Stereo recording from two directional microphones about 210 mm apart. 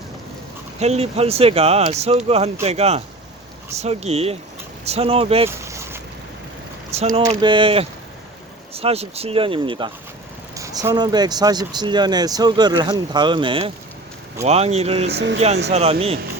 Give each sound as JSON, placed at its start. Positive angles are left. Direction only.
{"t": 0.8, "sound": "speech", "side_deg": -30}
{"t": 5.5, "sound": "boat", "side_deg": -15}
{"t": 6.9, "sound": "speech", "side_deg": -30}
{"t": 15.1, "sound": "speech", "side_deg": -55}
{"t": 15.7, "sound": "speech", "side_deg": -30}